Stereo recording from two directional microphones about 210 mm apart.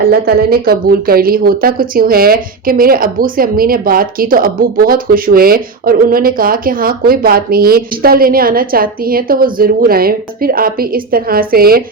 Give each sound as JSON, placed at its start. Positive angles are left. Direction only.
{"t": 0.1, "sound": "a woman's voice", "side_deg": -45}